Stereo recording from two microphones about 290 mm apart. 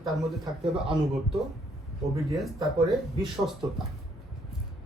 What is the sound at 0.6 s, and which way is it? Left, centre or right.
Speech, centre.